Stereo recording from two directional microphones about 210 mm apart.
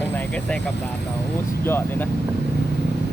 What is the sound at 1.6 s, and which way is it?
Speech, 10° left (ahead or behind).